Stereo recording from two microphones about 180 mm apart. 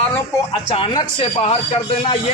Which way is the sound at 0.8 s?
30° left (ahead or behind).